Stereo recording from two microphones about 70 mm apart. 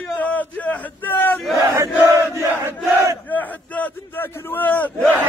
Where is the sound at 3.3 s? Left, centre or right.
Left.